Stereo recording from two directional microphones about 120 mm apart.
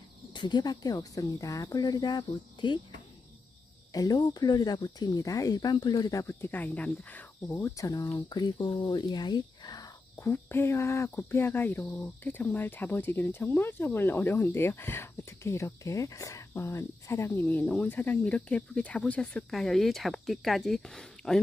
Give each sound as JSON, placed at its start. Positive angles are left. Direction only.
{"t": 0.3, "sound": "speech", "side_deg": 40}
{"t": 3.9, "sound": "speech", "side_deg": 30}
{"t": 7.7, "sound": "speech", "side_deg": 30}
{"t": 10.2, "sound": "speech", "side_deg": 20}